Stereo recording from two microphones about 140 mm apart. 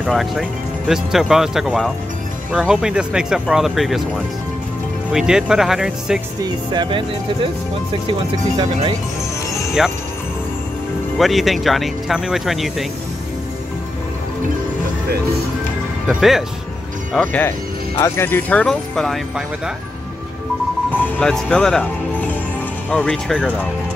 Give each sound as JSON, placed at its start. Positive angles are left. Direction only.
{"t": 0.0, "sound": "speech", "side_deg": 0}
{"t": 5.1, "sound": "speech", "side_deg": -5}
{"t": 6.4, "sound": "speech", "side_deg": -30}
{"t": 9.8, "sound": "speech", "side_deg": -5}
{"t": 11.1, "sound": "speech", "side_deg": 0}
{"t": 16.1, "sound": "speech", "side_deg": 0}
{"t": 17.1, "sound": "speech", "side_deg": 10}
{"t": 20.9, "sound": "speech", "side_deg": 10}
{"t": 22.8, "sound": "speech", "side_deg": 10}